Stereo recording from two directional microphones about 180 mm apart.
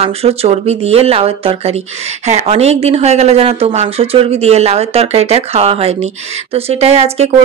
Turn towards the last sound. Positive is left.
turn(degrees=-35)  # may be behind; listen again after turning